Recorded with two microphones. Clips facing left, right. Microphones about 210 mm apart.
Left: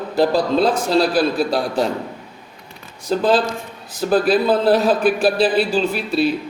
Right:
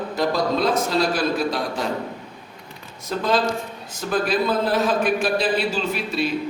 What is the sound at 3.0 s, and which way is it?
A man's voice, 30° left (ahead or behind).